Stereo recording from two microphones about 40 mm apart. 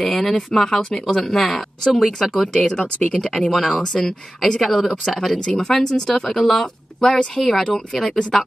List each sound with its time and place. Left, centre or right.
0.0 s speech: centre
2.4 s speech: centre
3.2 s speech: centre
6.3 s speech: centre